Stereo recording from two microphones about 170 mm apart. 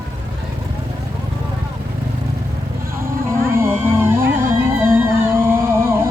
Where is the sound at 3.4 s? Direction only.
15° right (ahead or behind).